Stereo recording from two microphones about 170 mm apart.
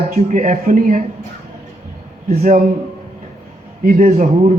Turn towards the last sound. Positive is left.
turn(degrees=-50)  # may be behind; listen again after turning